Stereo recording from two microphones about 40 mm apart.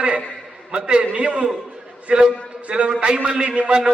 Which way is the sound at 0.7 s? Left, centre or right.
Right.